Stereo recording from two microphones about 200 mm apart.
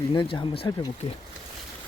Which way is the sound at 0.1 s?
25° left (ahead or behind).